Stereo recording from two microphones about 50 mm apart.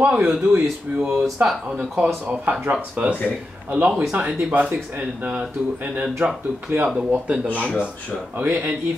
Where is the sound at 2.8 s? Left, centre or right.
Right.